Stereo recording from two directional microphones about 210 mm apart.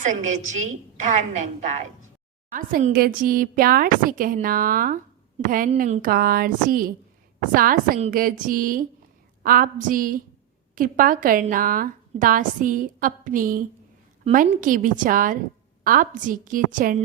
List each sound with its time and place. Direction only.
0.0 s a woman's voice: 35° right (ahead or behind)